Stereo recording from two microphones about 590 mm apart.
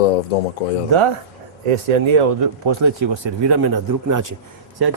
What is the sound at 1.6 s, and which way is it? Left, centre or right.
Speech, right.